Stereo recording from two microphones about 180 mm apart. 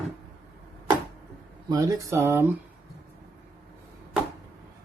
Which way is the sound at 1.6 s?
20° right (ahead or behind).